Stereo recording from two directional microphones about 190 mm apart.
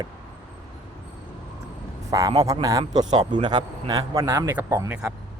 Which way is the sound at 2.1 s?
20° right (ahead or behind).